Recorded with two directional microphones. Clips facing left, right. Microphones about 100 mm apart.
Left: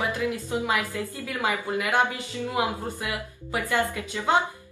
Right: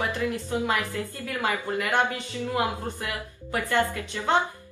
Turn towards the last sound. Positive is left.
turn(degrees=15)  # may be behind; listen again after turning